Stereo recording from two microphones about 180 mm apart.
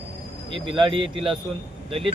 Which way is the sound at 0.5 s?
30° right (ahead or behind).